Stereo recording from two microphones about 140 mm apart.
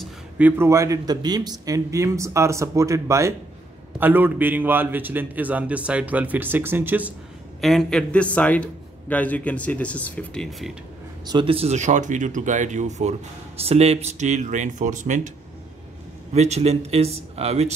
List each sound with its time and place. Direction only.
0.4 s a man's voice: 15° right (ahead or behind)
7.6 s speech: 5° left (ahead or behind)
11.2 s speech: 35° right (ahead or behind); by 13.1 s 55° right (ahead or behind)
13.6 s speech: 45° right (ahead or behind); by 15.3 s 65° right (ahead or behind)
16.3 s speech: 50° right (ahead or behind)